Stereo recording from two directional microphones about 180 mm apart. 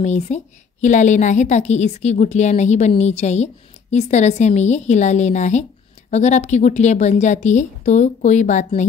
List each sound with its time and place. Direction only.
0.0 s a woman's voice: 40° left (ahead or behind)